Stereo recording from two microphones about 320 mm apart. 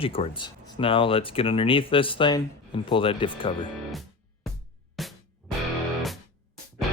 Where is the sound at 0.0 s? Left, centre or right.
Centre.